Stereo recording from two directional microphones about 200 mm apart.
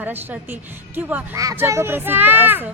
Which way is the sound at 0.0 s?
10° right (ahead or behind).